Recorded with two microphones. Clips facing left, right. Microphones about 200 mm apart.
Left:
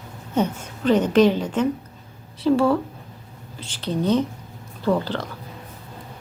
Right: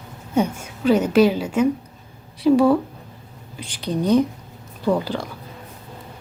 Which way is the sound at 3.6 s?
15° right (ahead or behind).